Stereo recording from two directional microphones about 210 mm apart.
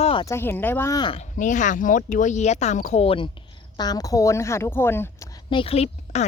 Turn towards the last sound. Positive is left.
turn(degrees=30)  # may be behind; listen again after turning